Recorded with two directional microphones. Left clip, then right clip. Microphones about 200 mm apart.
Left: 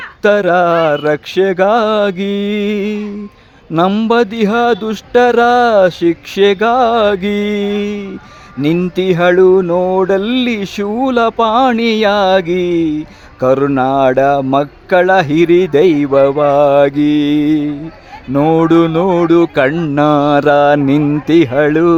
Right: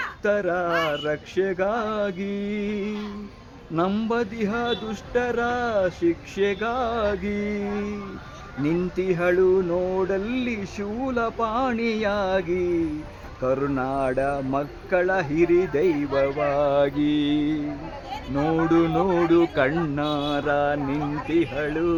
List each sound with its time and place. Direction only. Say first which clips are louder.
0.2 s speech: left 14 dB; 45° left (ahead or behind)
20.0 s speech: left 15 dB; 40° left (ahead or behind)